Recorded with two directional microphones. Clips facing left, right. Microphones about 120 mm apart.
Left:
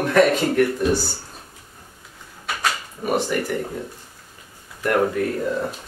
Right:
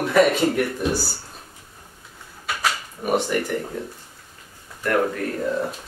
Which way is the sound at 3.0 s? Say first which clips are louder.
Even; centre (ahead or behind).